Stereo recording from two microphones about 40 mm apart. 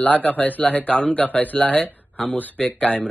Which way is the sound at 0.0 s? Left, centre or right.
Left.